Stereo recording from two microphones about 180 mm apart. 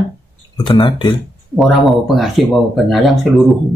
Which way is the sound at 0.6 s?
30° left (ahead or behind).